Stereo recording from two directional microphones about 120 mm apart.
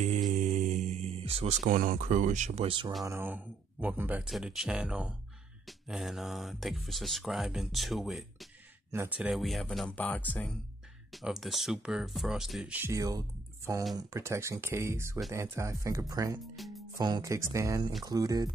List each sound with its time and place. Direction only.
0.3 s mantra: 90° right
2.6 s speech: 45° right (ahead or behind)
3.1 s speech: 15° right (ahead or behind)
4.2 s speech: 5° right (ahead or behind)
8.9 s speech: 20° right (ahead or behind)
9.2 s speech: centre (ahead or behind)
11.1 s speech: centre (ahead or behind)
12.7 s speech: 20° right (ahead or behind)
16.5 s music: centre (ahead or behind)
17.0 s speech: 30° right (ahead or behind)